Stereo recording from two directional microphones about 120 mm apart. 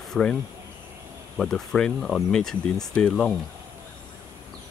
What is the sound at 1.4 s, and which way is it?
Speech, 5° left (ahead or behind).